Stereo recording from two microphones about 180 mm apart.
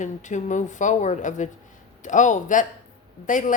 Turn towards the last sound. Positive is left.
turn(degrees=45)  # may be behind; listen again after turning